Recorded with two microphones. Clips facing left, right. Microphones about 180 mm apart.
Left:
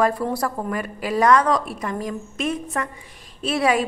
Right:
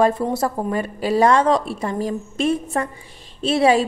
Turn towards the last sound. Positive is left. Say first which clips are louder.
# right 4 dB
turn(degrees=-25)  # may be behind; listen again after turning